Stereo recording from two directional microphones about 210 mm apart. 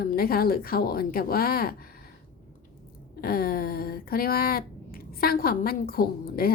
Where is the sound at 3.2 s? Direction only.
45° left (ahead or behind).